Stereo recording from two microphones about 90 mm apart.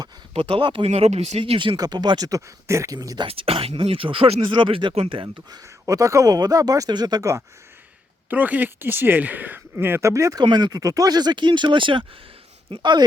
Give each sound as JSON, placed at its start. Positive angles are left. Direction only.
{"t": 0.3, "sound": "speech", "side_deg": -70}
{"t": 1.4, "sound": "speech", "side_deg": -65}
{"t": 3.2, "sound": "speech", "side_deg": -90}
{"t": 5.5, "sound": "speech", "side_deg": -40}
{"t": 8.3, "sound": "speech", "side_deg": -20}
{"t": 10.4, "sound": "speech", "side_deg": -55}
{"t": 12.7, "sound": "speech", "side_deg": -55}